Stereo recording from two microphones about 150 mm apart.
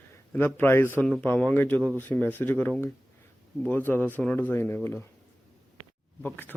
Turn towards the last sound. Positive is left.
turn(degrees=10)  # may be behind; listen again after turning